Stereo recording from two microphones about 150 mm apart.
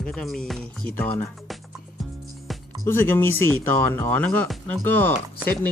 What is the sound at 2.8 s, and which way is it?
Speech, 15° left (ahead or behind).